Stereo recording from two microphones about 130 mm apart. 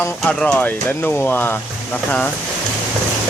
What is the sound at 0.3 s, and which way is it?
Speech, 10° left (ahead or behind).